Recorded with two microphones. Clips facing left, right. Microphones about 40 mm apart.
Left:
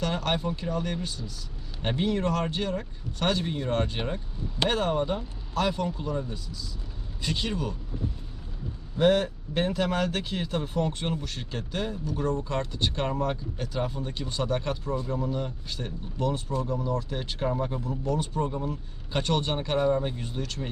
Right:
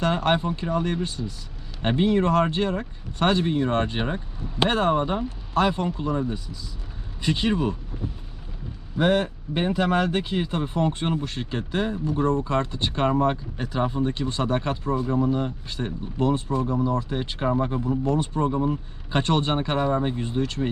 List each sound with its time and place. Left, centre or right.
0.0 s speech: right
9.0 s speech: centre